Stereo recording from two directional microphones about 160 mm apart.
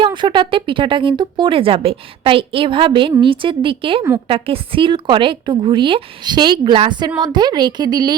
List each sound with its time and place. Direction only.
0.0 s a woman's voice: 30° right (ahead or behind)